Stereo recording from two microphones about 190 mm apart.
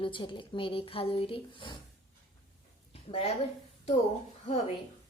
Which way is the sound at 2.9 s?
30° left (ahead or behind).